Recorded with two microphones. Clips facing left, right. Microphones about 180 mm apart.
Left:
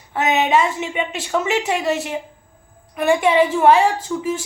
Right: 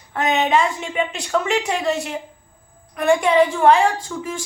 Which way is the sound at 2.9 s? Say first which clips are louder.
Even; 5° left (ahead or behind).